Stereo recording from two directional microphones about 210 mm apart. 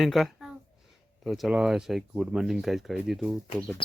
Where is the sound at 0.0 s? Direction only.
Centre (ahead or behind).